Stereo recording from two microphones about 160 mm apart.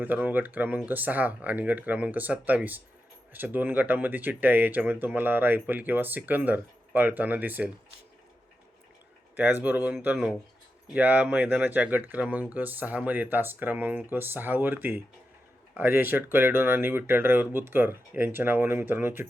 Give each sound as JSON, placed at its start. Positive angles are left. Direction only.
{"t": 0.0, "sound": "speech", "side_deg": -10}
{"t": 9.3, "sound": "speech", "side_deg": -10}